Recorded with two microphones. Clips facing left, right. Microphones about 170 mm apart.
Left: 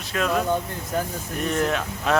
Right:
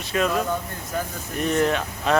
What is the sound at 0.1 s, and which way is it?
A man's voice, centre (ahead or behind).